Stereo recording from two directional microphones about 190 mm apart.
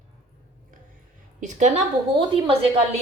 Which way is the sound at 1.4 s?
40° right (ahead or behind).